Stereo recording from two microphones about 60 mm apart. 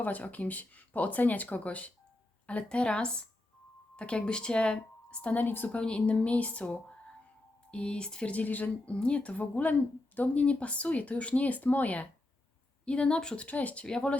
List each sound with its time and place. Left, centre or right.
0.0 s a woman's voice: left
5.7 s speech: centre
13.8 s a woman's voice: centre